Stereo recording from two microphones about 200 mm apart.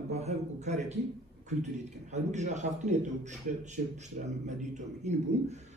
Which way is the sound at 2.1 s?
35° right (ahead or behind).